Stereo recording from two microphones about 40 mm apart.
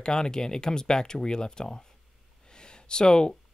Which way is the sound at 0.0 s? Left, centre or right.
Centre.